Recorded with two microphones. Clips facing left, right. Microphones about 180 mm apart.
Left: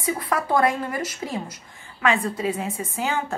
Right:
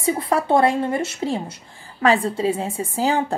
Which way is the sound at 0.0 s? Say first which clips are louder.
Right 5 dB; 30° right (ahead or behind).